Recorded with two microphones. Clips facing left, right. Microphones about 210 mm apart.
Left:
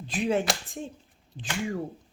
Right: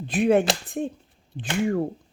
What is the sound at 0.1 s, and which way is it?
Speech, 55° right (ahead or behind).